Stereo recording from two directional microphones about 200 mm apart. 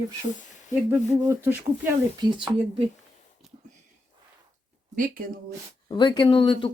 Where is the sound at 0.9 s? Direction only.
15° right (ahead or behind).